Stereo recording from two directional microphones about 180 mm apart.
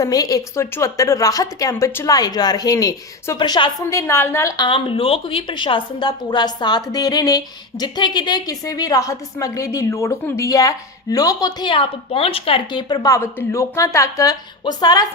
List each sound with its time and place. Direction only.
0.0 s a woman's voice: 20° left (ahead or behind)